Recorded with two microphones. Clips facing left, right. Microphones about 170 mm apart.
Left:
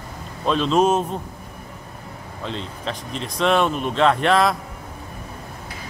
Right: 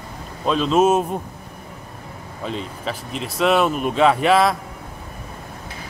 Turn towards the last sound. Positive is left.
turn(degrees=-5)  # may be behind; listen again after turning